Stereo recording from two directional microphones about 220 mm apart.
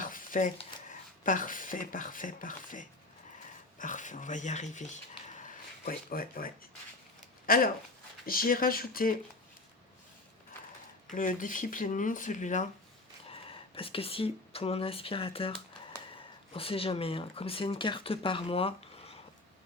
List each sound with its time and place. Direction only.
0.0 s a sound: 40° left (ahead or behind)
1.2 s speech: 35° left (ahead or behind)
11.1 s speech: 35° left (ahead or behind)